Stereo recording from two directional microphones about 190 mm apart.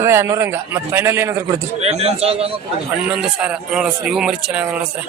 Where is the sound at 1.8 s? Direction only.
35° right (ahead or behind).